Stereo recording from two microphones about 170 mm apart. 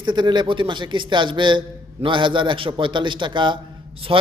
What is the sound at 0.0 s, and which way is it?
A man's voice, 25° right (ahead or behind).